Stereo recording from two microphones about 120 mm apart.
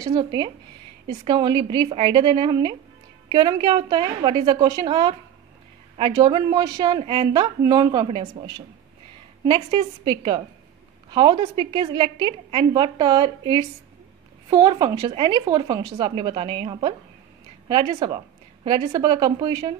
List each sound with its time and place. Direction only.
0.1 s a woman's voice: 40° right (ahead or behind)
8.1 s speech: 45° right (ahead or behind)
9.5 s a woman's voice: 40° right (ahead or behind)